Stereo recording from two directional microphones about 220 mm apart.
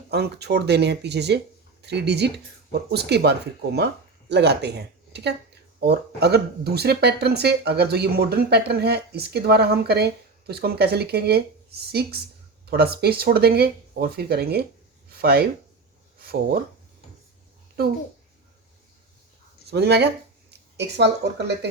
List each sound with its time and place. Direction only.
0.1 s speech: 50° right (ahead or behind)
5.8 s speech: 50° right (ahead or behind)
19.7 s speech: 50° right (ahead or behind)